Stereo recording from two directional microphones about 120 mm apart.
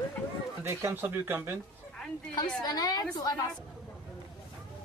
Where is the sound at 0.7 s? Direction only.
20° right (ahead or behind).